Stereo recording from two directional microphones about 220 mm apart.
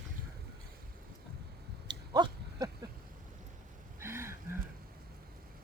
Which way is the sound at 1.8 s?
20° right (ahead or behind).